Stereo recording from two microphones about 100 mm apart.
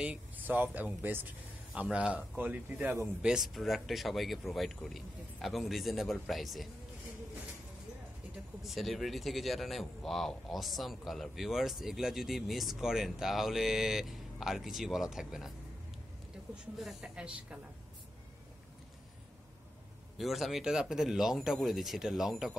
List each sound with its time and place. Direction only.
0.0 s speech: 15° right (ahead or behind)
3.2 s a man's voice: 5° right (ahead or behind)
8.6 s a man's voice: centre (ahead or behind)
16.7 s speech: 5° right (ahead or behind)
20.2 s a man's voice: centre (ahead or behind)